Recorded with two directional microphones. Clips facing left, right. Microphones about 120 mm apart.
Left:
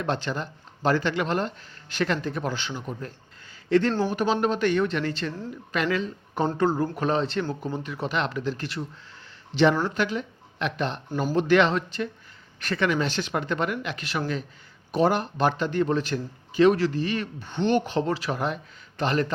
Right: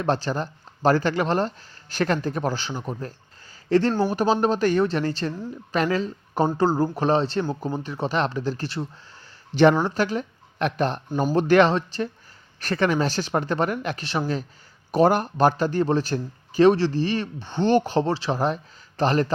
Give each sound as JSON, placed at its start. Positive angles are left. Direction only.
{"t": 0.0, "sound": "a man's voice", "side_deg": -35}